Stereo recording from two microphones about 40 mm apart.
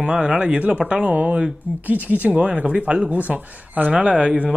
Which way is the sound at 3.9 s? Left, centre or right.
Right.